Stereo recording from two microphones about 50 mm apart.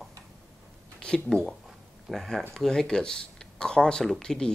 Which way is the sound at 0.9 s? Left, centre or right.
Centre.